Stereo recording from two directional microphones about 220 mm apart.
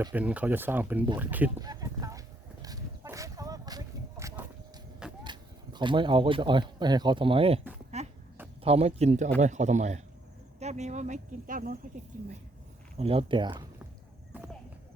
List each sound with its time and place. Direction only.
0.0 s speech: 5° right (ahead or behind)
1.5 s a sound: 15° right (ahead or behind)
5.2 s speech: 20° right (ahead or behind)
7.9 s a sound: 30° right (ahead or behind)
8.6 s speech: 25° right (ahead or behind)
13.0 s speech: 25° right (ahead or behind)